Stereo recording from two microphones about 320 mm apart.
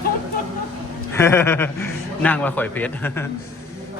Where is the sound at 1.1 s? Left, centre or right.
Centre.